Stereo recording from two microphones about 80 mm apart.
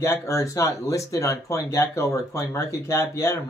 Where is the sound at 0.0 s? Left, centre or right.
Left.